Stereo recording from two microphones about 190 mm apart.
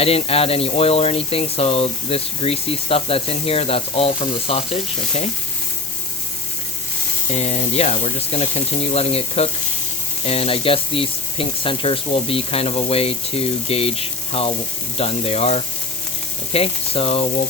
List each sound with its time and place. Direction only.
0.0 s speech: 30° left (ahead or behind)
7.3 s speech: 35° left (ahead or behind)